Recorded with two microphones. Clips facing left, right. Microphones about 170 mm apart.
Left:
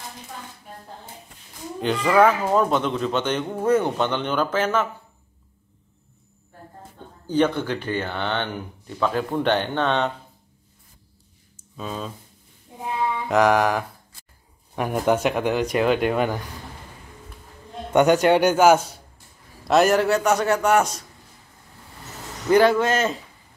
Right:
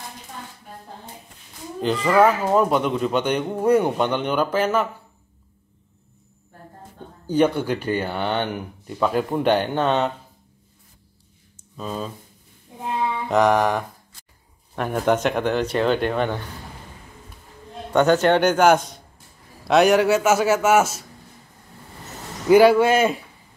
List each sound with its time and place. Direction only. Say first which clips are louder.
1.8 s speech: right 1 dB; centre (ahead or behind)
7.2 s speech: right 2 dB; 10° right (ahead or behind)
11.7 s speech: right 2 dB; centre (ahead or behind)
13.3 s a man's voice: even; centre (ahead or behind)
17.9 s a man's voice: even; 15° left (ahead or behind); by 21.0 s 5° right (ahead or behind)
22.5 s speech: right 4 dB; 10° right (ahead or behind)